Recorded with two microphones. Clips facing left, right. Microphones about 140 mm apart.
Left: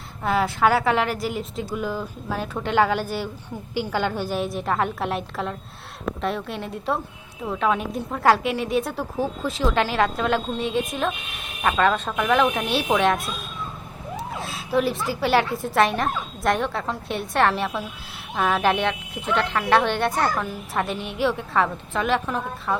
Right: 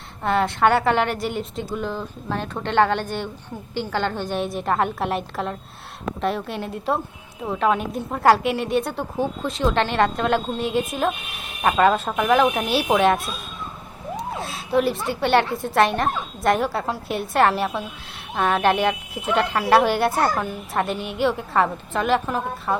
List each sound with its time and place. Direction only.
0.2 s a woman's voice: 5° left (ahead or behind)
12.0 s speech: 20° right (ahead or behind)
12.3 s a woman's voice: 5° right (ahead or behind)